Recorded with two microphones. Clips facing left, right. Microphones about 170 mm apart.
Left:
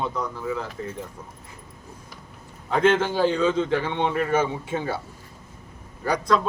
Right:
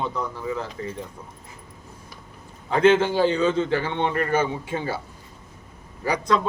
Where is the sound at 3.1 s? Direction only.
10° right (ahead or behind).